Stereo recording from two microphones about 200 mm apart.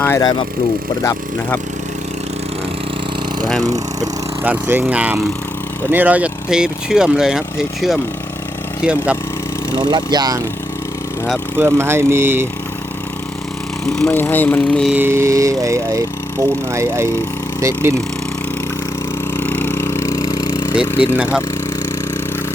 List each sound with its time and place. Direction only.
0.0 s speech: 15° left (ahead or behind)
3.6 s speech: 15° right (ahead or behind); by 7.9 s centre (ahead or behind)
9.9 s speech: 20° right (ahead or behind)
11.5 s speech: 10° right (ahead or behind)
13.9 s speech: 5° left (ahead or behind)
14.9 s speech: 10° right (ahead or behind)
19.3 s a sound: 10° left (ahead or behind)
21.0 s speech: 10° right (ahead or behind)